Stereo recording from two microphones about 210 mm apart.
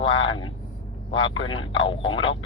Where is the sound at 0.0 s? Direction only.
25° left (ahead or behind).